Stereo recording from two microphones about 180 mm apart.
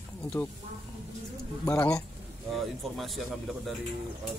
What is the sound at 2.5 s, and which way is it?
Speech, centre (ahead or behind).